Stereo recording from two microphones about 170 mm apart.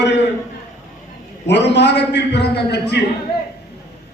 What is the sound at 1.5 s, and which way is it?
A man's voice, 90° left.